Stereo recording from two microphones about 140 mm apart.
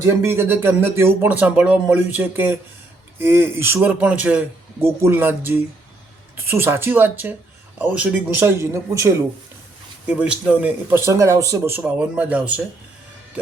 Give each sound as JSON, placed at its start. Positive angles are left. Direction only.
{"t": 0.2, "sound": "a man's voice", "side_deg": -15}
{"t": 10.1, "sound": "speech", "side_deg": -10}